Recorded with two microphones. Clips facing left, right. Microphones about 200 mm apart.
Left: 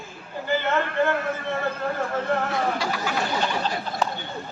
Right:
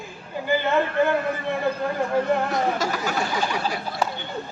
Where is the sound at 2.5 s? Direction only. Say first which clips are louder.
Right 2 dB; 45° right (ahead or behind).